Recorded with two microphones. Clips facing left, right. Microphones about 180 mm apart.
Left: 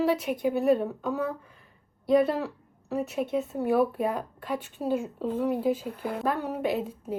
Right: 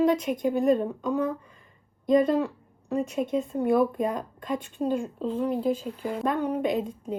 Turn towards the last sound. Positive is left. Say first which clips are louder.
# right 2 dB
turn(degrees=5)  # may be behind; listen again after turning